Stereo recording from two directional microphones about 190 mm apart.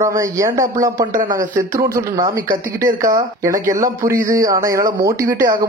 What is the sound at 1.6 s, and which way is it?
Speech, 15° right (ahead or behind).